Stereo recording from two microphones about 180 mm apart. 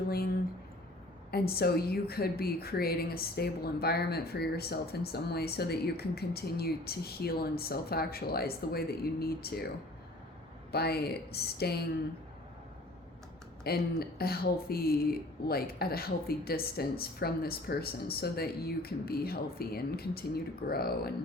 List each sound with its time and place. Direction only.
1.3 s a woman's voice: 60° left (ahead or behind)
10.7 s a woman's voice: 65° left (ahead or behind)
13.7 s a woman's voice: 60° left (ahead or behind)